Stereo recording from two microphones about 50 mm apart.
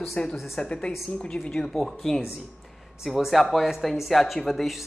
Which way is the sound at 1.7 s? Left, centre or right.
Centre.